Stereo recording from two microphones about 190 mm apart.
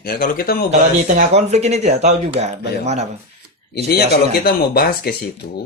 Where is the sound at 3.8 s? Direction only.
55° left (ahead or behind).